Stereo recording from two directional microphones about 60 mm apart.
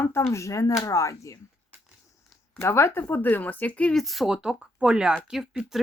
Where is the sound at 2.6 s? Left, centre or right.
Left.